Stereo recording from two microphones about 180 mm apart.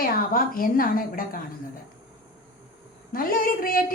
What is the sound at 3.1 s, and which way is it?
Speech, 50° left (ahead or behind).